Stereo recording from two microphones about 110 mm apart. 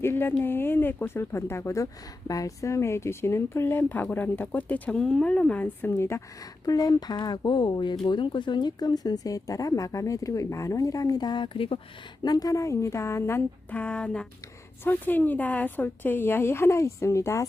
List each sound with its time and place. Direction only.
0.0 s speech: 20° left (ahead or behind); by 11.8 s 55° left (ahead or behind)
12.2 s speech: 35° left (ahead or behind)